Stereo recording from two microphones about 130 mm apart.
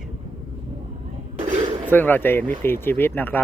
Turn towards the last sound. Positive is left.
turn(degrees=15)  # may be behind; listen again after turning